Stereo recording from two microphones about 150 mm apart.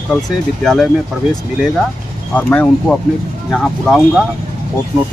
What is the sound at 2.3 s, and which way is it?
Speech, 10° left (ahead or behind).